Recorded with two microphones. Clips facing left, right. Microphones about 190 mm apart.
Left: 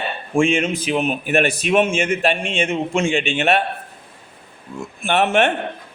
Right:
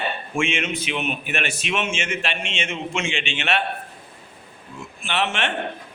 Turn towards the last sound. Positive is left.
turn(degrees=55)  # may be behind; listen again after turning